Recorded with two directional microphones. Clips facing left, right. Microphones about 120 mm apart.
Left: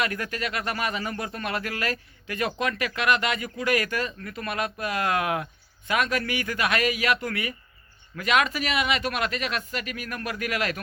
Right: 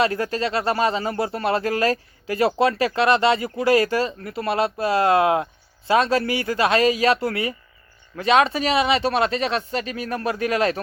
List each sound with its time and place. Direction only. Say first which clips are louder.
0.0 s speech: right 8 dB; 30° right (ahead or behind)